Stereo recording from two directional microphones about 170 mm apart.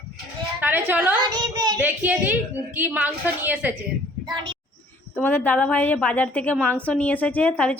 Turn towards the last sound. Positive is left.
turn(degrees=5)  # may be behind; listen again after turning